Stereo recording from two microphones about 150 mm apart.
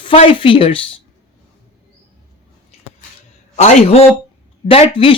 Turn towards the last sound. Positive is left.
turn(degrees=35)  # may be behind; listen again after turning